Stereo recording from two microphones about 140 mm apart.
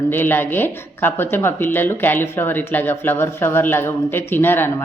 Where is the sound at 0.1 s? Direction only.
15° left (ahead or behind).